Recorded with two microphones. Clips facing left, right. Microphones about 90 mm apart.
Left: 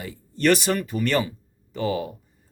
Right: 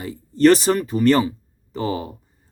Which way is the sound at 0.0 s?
35° right (ahead or behind).